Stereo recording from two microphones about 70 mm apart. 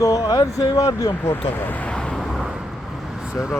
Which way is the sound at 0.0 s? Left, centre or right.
Left.